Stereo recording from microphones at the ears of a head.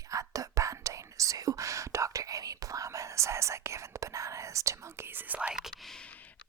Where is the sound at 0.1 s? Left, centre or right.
Right.